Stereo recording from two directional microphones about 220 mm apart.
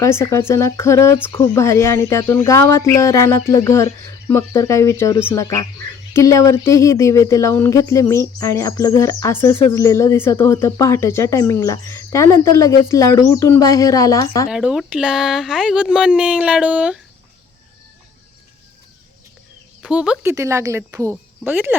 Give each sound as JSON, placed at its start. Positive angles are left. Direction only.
{"t": 0.0, "sound": "speech", "side_deg": 10}
{"t": 14.5, "sound": "speech", "side_deg": -5}
{"t": 19.8, "sound": "speech", "side_deg": -5}